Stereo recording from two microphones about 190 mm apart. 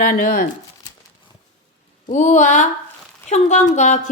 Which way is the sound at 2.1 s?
40° left (ahead or behind).